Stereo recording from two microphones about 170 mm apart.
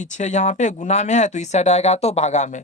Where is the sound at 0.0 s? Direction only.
45° left (ahead or behind).